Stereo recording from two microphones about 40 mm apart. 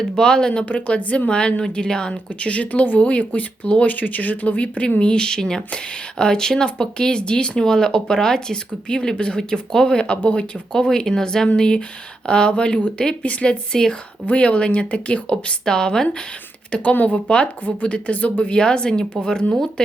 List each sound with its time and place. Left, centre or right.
0.2 s speech: centre
0.6 s speech: left
1.3 s speech: left
9.4 s speech: centre; by 15.5 s left
15.6 s speech: centre
16.9 s speech: left
17.2 s speech: left
18.5 s speech: left